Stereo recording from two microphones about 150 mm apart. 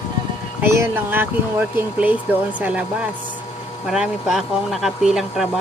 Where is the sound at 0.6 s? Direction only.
15° right (ahead or behind).